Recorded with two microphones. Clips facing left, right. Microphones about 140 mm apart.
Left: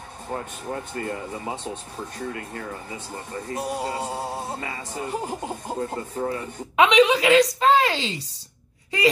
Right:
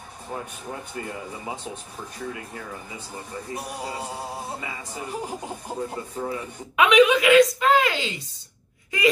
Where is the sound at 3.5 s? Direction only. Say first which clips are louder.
Left 6 dB; 5° right (ahead or behind).